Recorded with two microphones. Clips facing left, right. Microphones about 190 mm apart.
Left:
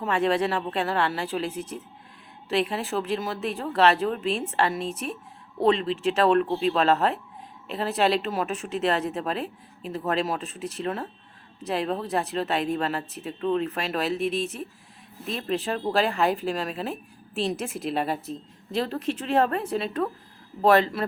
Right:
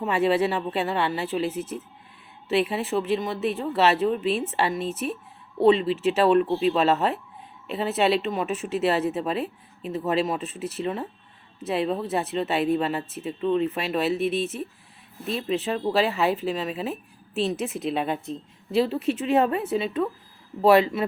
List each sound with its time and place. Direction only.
0.0 s speech: 5° right (ahead or behind)